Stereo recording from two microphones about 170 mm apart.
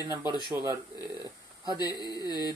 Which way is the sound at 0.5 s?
15° right (ahead or behind).